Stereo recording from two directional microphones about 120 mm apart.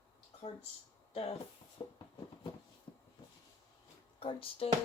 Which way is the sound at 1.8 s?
40° left (ahead or behind).